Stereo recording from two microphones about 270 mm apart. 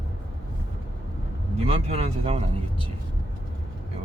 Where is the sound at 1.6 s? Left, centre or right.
Right.